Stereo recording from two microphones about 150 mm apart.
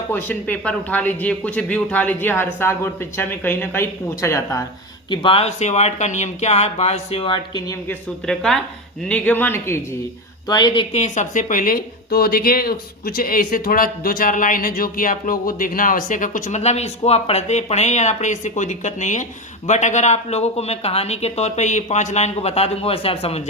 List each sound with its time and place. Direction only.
0.1 s speech: 10° left (ahead or behind)
5.1 s speech: 35° left (ahead or behind)
7.9 s a woman's voice: 5° left (ahead or behind)
10.5 s speech: 30° left (ahead or behind)
10.9 s speech: 50° left (ahead or behind)